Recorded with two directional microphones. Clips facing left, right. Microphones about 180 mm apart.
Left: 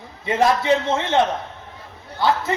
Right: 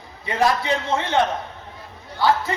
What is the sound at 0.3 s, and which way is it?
Speech, 20° left (ahead or behind).